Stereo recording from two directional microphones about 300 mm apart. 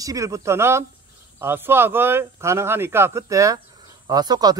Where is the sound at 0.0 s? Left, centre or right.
Centre.